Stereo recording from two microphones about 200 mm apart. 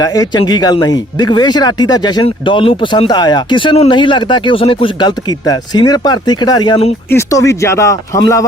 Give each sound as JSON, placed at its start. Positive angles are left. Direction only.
{"t": 0.0, "sound": "speech", "side_deg": 20}
{"t": 7.1, "sound": "speech", "side_deg": 15}